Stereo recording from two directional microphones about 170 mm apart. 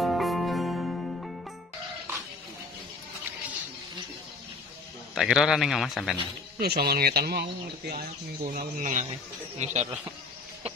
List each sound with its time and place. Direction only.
0.0 s music: centre (ahead or behind)
5.1 s a man's voice: centre (ahead or behind)
6.6 s speech: 65° right (ahead or behind); by 9.8 s 40° right (ahead or behind)